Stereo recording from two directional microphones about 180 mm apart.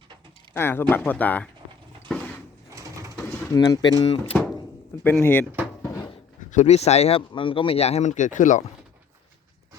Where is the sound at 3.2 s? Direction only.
20° left (ahead or behind).